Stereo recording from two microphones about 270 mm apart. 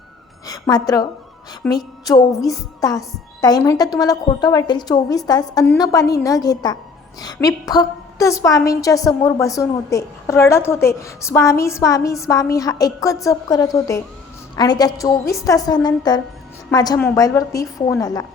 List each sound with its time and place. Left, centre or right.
0.4 s a woman's voice: centre
1.6 s a sound: centre
2.5 s a woman's voice: centre